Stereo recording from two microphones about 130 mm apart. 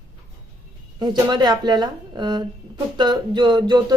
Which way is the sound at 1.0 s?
35° right (ahead or behind).